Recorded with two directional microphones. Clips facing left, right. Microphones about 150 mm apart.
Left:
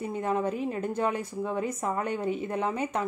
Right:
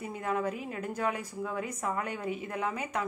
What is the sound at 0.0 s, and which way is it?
A woman's voice, 30° left (ahead or behind).